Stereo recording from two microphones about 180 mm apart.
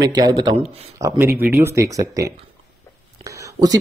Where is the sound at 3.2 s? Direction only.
20° right (ahead or behind).